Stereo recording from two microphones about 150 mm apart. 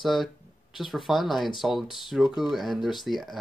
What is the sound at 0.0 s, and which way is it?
Speech, centre (ahead or behind).